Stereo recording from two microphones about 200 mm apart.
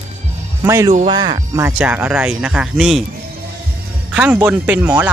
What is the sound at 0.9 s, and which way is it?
Speech, 30° right (ahead or behind).